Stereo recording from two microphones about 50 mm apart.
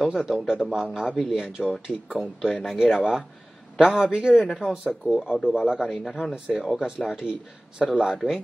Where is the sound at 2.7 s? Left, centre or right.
Centre.